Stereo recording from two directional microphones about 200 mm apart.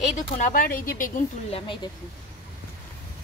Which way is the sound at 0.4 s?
40° left (ahead or behind).